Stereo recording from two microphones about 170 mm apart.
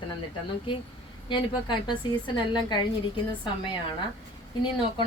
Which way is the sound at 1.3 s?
30° left (ahead or behind).